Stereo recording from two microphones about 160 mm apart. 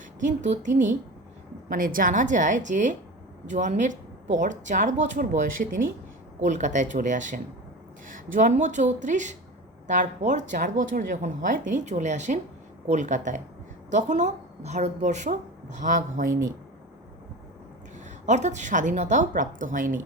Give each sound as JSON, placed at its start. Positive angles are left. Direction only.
{"t": 0.2, "sound": "speech", "side_deg": -50}
{"t": 18.3, "sound": "speech", "side_deg": -50}